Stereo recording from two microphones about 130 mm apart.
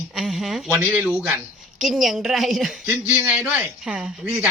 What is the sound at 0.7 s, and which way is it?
A man's voice, 15° right (ahead or behind).